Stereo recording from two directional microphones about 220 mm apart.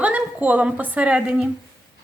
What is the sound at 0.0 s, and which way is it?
A woman's voice, 5° right (ahead or behind).